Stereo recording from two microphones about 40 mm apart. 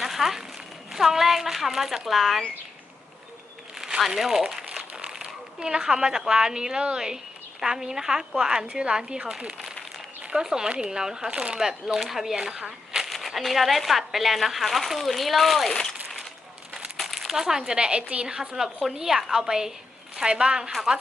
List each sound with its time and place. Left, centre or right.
0.0 s crumpling: centre
0.9 s speech: centre
3.8 s a sound: centre
4.0 s speech: centre
4.8 s speech: right
11.3 s speech: right
11.9 s speech: centre
13.1 s speech: centre
15.7 s a sound: centre
17.2 s speech: centre
17.7 s speech: right
18.3 s speech: centre